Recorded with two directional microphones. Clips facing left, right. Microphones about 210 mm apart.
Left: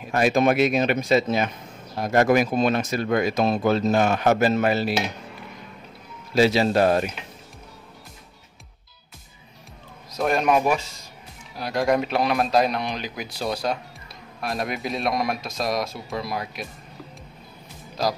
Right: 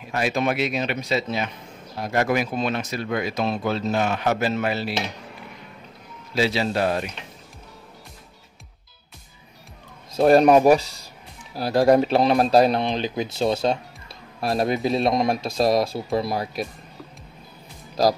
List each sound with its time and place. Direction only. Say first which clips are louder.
0.1 s speech: left 4 dB; 45° left (ahead or behind)
6.3 s speech: left 4 dB; 45° left (ahead or behind)
10.1 s speech: right 7 dB; 35° right (ahead or behind)